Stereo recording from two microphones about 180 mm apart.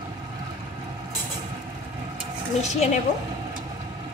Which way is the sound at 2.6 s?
40° left (ahead or behind).